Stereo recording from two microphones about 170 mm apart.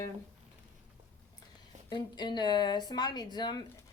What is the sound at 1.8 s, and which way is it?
A woman's voice, 25° left (ahead or behind).